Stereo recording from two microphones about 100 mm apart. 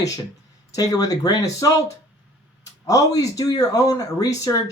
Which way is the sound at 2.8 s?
35° left (ahead or behind).